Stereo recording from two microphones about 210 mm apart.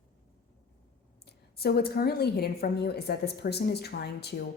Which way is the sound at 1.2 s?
50° left (ahead or behind).